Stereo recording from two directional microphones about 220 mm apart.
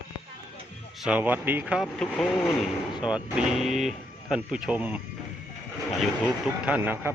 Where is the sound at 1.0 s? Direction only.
5° right (ahead or behind).